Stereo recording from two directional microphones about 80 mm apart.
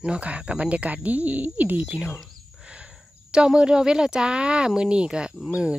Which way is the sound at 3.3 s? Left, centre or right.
Centre.